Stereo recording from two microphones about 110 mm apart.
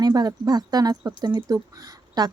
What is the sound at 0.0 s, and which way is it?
Speech, 35° right (ahead or behind).